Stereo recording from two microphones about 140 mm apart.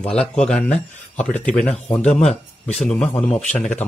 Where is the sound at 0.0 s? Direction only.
5° left (ahead or behind).